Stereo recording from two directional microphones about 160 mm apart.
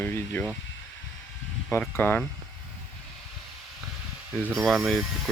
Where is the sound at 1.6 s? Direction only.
10° left (ahead or behind).